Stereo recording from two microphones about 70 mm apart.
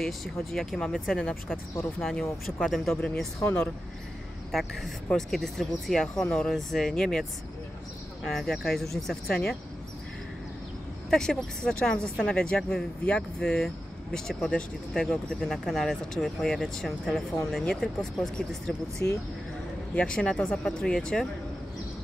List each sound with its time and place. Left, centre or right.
0.0 s speech: centre
8.3 s speech: centre
11.1 s speech: centre
19.0 s speech: left
20.0 s speech: centre